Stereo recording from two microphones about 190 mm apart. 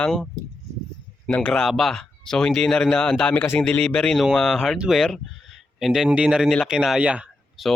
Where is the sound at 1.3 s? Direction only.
5° left (ahead or behind).